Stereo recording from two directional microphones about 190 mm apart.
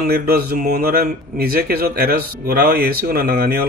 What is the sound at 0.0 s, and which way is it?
Speech, 50° right (ahead or behind).